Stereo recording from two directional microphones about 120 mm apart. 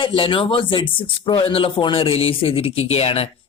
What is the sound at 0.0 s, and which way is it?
Speech, 45° left (ahead or behind).